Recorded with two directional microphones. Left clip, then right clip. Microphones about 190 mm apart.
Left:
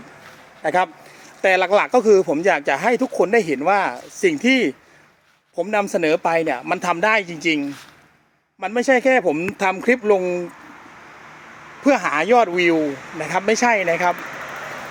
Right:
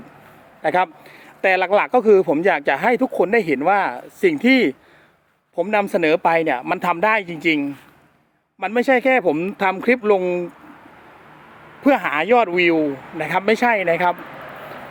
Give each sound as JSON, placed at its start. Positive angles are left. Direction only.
{"t": 0.6, "sound": "a man's voice", "side_deg": -10}
{"t": 7.3, "sound": "speech", "side_deg": -55}
{"t": 8.6, "sound": "speech", "side_deg": -10}
{"t": 11.9, "sound": "speech", "side_deg": -15}